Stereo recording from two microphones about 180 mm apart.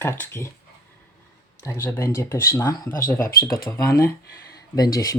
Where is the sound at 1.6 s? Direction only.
15° left (ahead or behind).